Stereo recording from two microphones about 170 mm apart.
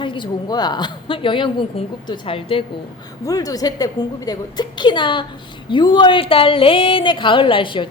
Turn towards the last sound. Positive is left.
turn(degrees=30)  # may be behind; listen again after turning